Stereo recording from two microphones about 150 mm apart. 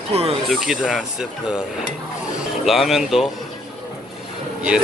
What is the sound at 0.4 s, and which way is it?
Speech, 5° right (ahead or behind).